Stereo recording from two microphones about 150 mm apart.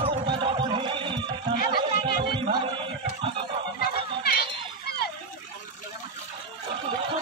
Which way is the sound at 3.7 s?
90° left.